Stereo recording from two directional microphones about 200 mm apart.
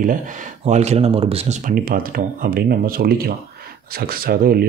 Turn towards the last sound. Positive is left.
turn(degrees=-50)  # may be behind; listen again after turning